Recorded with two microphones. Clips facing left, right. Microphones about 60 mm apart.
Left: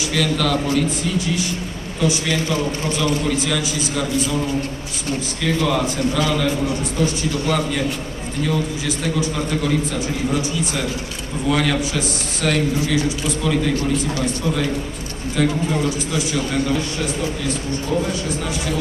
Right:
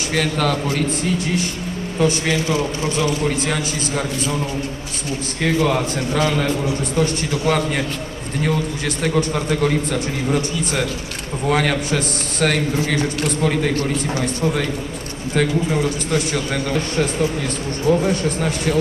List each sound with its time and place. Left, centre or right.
0.1 s a man's voice: right
5.4 s a man's voice: right
15.4 s a man's voice: right